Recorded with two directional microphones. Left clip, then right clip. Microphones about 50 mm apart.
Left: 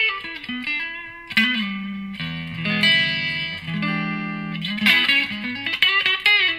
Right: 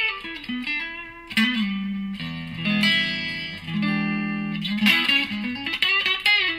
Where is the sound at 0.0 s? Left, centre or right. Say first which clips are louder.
Left 4 dB; left.